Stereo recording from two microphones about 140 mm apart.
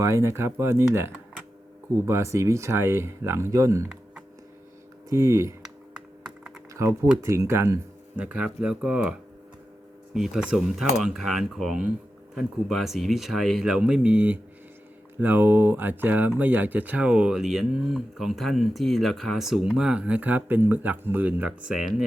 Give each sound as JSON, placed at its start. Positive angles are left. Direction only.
{"t": 0.0, "sound": "speech", "side_deg": -20}
{"t": 2.0, "sound": "speech", "side_deg": -20}
{"t": 5.0, "sound": "speech", "side_deg": -20}
{"t": 7.2, "sound": "speech", "side_deg": -20}
{"t": 8.2, "sound": "speech", "side_deg": -10}
{"t": 10.2, "sound": "speech", "side_deg": -5}